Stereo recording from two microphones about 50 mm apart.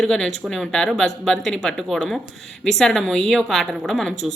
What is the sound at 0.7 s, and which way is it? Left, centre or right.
Speech, centre.